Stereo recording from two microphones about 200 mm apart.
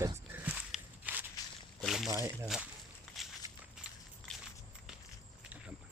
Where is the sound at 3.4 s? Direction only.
15° right (ahead or behind).